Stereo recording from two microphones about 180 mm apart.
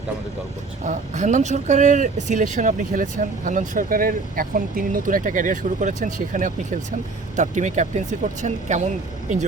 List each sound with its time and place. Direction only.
0.9 s speech: 40° right (ahead or behind)